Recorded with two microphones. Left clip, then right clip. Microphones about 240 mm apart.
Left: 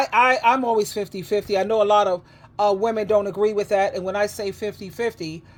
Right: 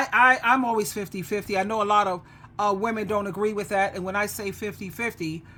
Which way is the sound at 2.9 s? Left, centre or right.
Centre.